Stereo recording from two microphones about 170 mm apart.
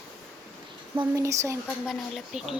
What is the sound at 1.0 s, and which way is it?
Speech, 20° right (ahead or behind).